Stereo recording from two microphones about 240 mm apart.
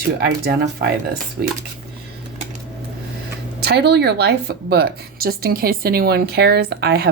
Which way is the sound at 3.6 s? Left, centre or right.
Right.